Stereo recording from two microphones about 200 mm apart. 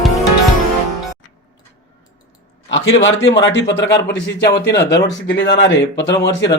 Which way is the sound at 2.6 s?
70° left (ahead or behind).